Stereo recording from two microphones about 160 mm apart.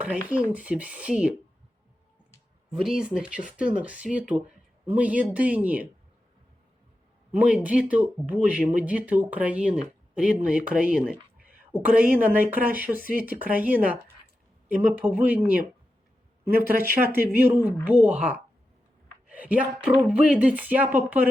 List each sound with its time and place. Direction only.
0.3 s speech: 10° right (ahead or behind)
2.6 s speech: 5° right (ahead or behind)
7.3 s speech: 10° right (ahead or behind)
16.7 s speech: 70° left (ahead or behind)
17.3 s speech: 10° right (ahead or behind)
19.3 s speech: 10° right (ahead or behind)